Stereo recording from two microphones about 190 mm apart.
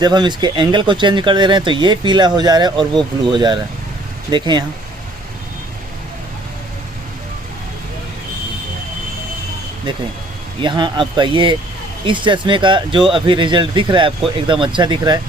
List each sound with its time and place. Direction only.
0.0 s speech: 20° right (ahead or behind)
10.6 s speech: 25° right (ahead or behind)